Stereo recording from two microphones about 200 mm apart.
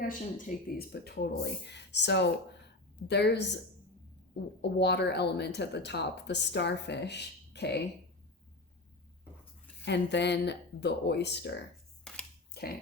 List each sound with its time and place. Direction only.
0.0 s speech: 45° left (ahead or behind)
4.6 s speech: 55° left (ahead or behind)
9.8 s speech: 60° left (ahead or behind)